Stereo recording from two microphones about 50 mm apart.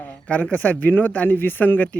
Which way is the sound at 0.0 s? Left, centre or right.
Left.